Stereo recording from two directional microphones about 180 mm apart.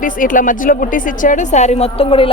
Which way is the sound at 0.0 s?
50° left (ahead or behind).